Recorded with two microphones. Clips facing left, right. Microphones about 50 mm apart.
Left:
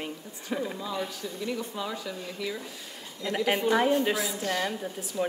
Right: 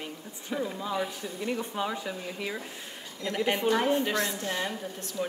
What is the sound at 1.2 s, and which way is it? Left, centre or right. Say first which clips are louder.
Speech: even; right.